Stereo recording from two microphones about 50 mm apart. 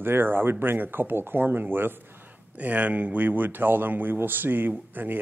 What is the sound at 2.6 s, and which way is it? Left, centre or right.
Speech, right.